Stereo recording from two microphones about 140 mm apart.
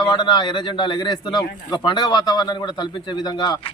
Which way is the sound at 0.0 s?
30° left (ahead or behind).